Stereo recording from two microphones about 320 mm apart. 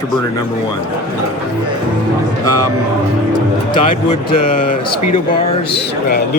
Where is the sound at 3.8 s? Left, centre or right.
Centre.